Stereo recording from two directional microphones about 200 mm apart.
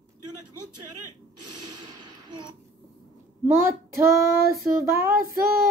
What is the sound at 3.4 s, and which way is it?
Speech, 15° right (ahead or behind).